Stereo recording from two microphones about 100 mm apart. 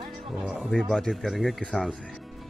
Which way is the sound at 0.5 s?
5° left (ahead or behind).